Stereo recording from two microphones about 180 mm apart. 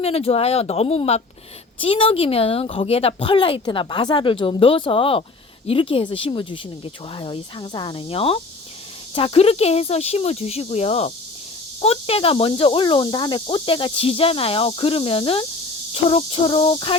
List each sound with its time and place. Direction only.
0.0 s speech: 35° left (ahead or behind)